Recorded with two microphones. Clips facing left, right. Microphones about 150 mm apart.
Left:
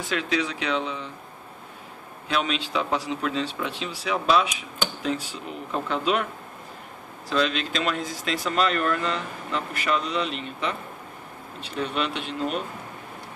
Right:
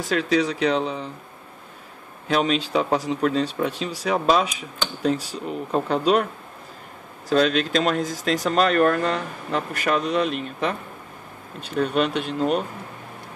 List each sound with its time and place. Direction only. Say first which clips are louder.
0.0 s speech: right 5 dB; 40° right (ahead or behind)
2.2 s speech: right 5 dB; 40° right (ahead or behind)
7.2 s speech: right 5 dB; 45° right (ahead or behind)